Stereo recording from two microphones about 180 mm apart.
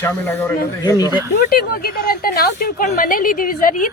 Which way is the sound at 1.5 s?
55° left (ahead or behind).